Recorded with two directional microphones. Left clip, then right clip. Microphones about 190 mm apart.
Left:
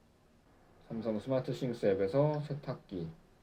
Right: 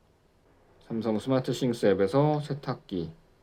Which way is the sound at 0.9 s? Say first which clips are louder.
Right 6 dB; 35° right (ahead or behind).